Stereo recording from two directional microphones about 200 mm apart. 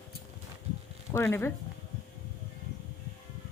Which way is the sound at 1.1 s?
10° left (ahead or behind).